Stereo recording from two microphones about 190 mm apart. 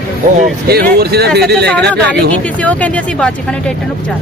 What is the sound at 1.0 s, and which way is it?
Speech, 55° right (ahead or behind).